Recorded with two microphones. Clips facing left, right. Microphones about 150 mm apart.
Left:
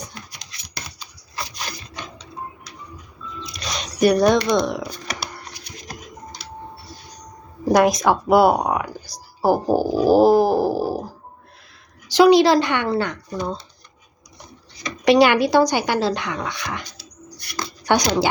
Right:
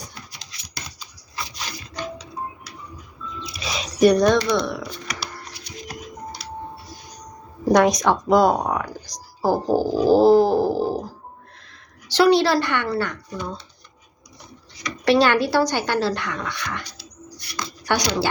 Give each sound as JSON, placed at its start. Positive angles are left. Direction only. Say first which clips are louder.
{"t": 3.4, "sound": "a sound", "louder": "even", "side_deg": -5}
{"t": 4.4, "sound": "speech", "louder": "left 2 dB", "side_deg": 20}
{"t": 7.7, "sound": "speech", "louder": "left 1 dB", "side_deg": 5}
{"t": 12.0, "sound": "speech", "louder": "left 4 dB", "side_deg": 15}
{"t": 13.3, "sound": "speech", "louder": "left 4 dB", "side_deg": 40}
{"t": 14.8, "sound": "speech", "louder": "left 3 dB", "side_deg": 15}
{"t": 17.9, "sound": "speech", "louder": "left 4 dB", "side_deg": 20}